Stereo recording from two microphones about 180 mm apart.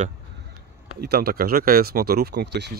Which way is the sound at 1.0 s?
60° right (ahead or behind).